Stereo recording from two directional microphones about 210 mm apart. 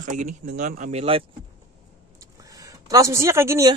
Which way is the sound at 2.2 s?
15° right (ahead or behind).